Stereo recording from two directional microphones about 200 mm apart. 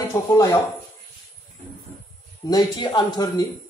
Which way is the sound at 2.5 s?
20° left (ahead or behind).